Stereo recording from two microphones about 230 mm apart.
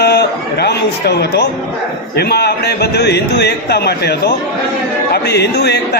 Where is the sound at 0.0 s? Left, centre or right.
Left.